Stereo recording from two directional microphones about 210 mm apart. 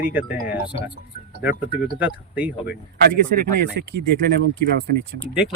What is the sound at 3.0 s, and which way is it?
Speech, 50° right (ahead or behind).